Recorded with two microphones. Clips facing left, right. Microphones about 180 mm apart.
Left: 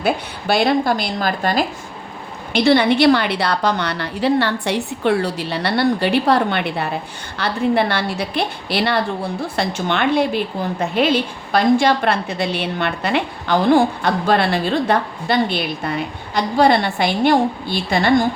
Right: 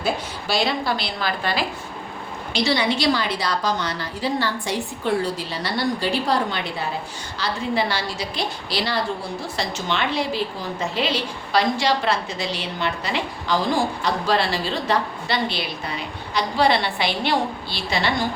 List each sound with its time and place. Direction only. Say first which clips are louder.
0.0 s a woman's voice: left 5 dB; 55° left (ahead or behind)
2.5 s a woman's voice: left 7 dB; 55° left (ahead or behind)